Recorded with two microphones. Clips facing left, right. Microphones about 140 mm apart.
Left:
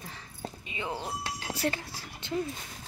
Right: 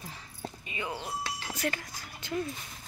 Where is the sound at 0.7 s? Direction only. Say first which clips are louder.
Left 1 dB; 25° left (ahead or behind).